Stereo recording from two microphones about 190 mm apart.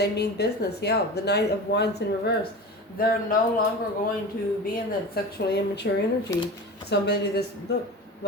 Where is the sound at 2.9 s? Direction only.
50° left (ahead or behind).